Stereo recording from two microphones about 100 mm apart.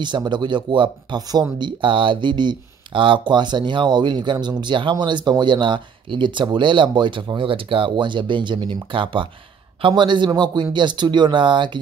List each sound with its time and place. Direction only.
0.0 s speech: 50° right (ahead or behind)